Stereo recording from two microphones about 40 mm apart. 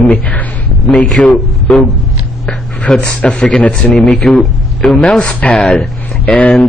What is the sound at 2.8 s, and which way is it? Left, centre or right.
Speech, left.